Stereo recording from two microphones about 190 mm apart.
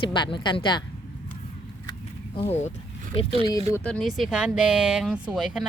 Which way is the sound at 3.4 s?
20° left (ahead or behind).